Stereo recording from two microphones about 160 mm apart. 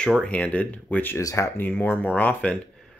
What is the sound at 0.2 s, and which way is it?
Speech, 10° left (ahead or behind).